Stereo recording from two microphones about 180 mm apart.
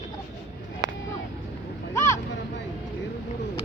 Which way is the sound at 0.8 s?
20° right (ahead or behind).